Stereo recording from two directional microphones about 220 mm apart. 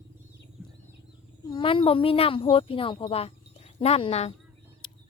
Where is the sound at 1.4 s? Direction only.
20° left (ahead or behind).